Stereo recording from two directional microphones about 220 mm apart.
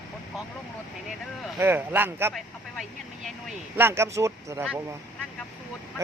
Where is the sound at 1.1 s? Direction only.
5° right (ahead or behind).